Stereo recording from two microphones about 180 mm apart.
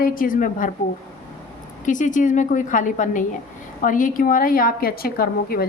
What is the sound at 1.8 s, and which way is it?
A woman's voice, 45° left (ahead or behind).